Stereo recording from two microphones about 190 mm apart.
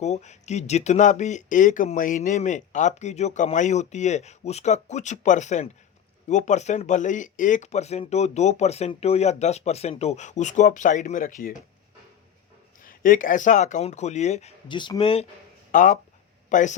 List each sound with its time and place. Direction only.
0.0 s speech: 35° left (ahead or behind)
12.8 s speech: 45° left (ahead or behind); by 15.3 s 30° left (ahead or behind)
15.7 s speech: 45° left (ahead or behind)